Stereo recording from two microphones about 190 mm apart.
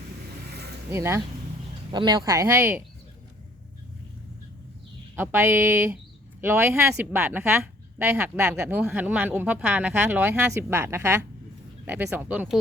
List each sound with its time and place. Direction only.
0.9 s a woman's voice: 15° right (ahead or behind)
5.1 s a woman's voice: 10° right (ahead or behind)